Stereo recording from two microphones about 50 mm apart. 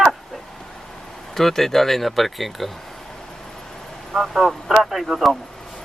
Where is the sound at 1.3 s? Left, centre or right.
Centre.